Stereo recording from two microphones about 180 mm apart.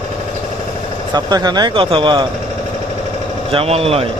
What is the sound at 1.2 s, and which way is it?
Speech, 20° right (ahead or behind).